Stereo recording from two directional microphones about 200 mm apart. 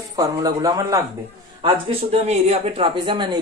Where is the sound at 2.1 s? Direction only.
30° right (ahead or behind).